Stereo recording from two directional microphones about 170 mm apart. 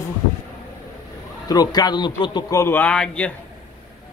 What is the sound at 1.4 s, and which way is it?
A man's voice, 25° left (ahead or behind).